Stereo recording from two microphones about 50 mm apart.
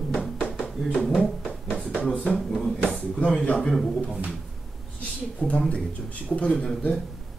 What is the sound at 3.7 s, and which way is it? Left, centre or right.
Speech, centre.